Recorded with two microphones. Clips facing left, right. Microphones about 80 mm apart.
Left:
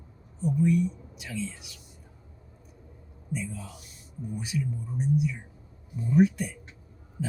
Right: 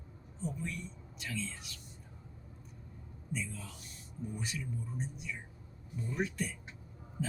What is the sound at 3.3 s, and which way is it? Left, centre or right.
Speech, centre.